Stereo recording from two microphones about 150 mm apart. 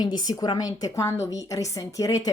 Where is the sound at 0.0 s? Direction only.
25° left (ahead or behind).